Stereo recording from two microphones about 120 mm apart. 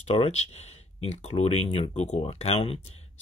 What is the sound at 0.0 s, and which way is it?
Speech, 60° left (ahead or behind).